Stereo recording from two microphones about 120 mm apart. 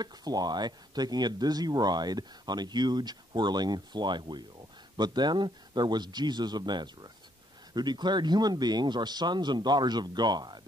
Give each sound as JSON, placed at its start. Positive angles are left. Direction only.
{"t": 0.0, "sound": "speech", "side_deg": -35}